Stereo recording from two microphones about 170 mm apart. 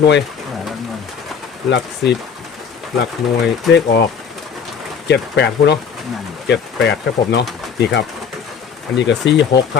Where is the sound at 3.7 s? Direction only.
75° left (ahead or behind).